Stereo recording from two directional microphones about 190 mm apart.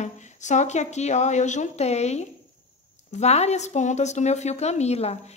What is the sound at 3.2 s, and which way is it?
A woman's voice, 35° left (ahead or behind).